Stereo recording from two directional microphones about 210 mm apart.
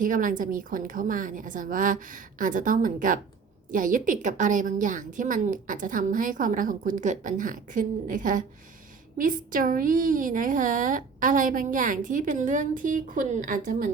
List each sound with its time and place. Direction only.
0.0 s a woman's voice: 40° right (ahead or behind)